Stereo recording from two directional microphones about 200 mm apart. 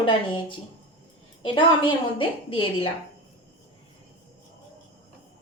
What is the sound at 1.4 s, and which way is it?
A woman's voice, 25° left (ahead or behind).